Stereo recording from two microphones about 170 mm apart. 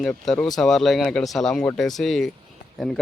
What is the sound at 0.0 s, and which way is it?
A man's voice, 5° left (ahead or behind).